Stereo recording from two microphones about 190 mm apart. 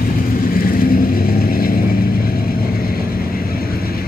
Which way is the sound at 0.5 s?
50° left (ahead or behind).